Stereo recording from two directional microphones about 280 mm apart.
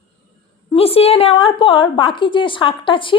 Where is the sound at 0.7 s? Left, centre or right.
Left.